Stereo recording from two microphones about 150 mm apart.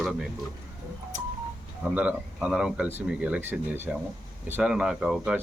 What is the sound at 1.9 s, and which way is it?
Speech, 10° right (ahead or behind).